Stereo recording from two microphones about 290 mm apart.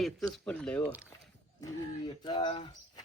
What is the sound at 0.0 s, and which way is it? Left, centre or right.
Speech, centre.